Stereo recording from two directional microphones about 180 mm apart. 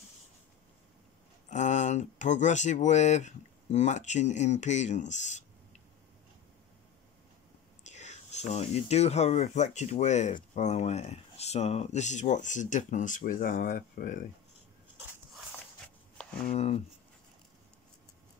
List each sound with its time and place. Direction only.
1.5 s speech: 40° left (ahead or behind)
7.8 s speech: 40° left (ahead or behind)
16.4 s speech: 35° left (ahead or behind)